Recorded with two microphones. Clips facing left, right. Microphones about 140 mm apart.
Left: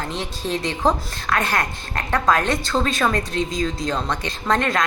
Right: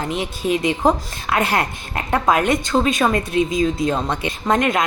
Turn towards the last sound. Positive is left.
turn(degrees=-15)  # may be behind; listen again after turning